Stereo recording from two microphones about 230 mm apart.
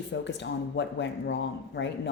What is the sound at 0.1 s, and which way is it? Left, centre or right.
Speech, left.